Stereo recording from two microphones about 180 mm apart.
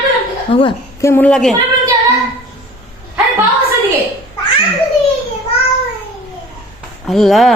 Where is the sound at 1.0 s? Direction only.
10° left (ahead or behind).